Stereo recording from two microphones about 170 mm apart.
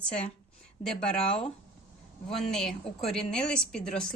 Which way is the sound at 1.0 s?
5° left (ahead or behind).